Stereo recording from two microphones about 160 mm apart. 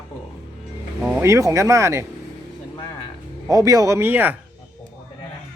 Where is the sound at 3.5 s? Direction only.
20° right (ahead or behind).